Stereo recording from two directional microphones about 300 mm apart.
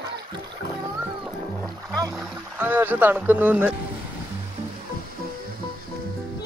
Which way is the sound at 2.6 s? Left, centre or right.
Centre.